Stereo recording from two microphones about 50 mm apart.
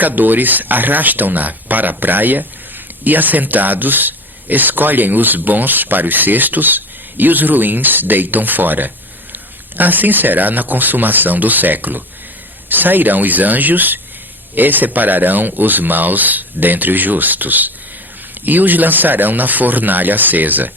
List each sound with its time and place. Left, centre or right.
0.0 s speech: right